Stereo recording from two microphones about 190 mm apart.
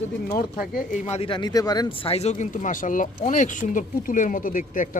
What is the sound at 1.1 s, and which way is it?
Speech, 30° left (ahead or behind).